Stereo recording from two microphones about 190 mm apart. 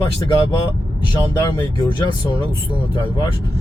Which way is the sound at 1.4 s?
20° left (ahead or behind).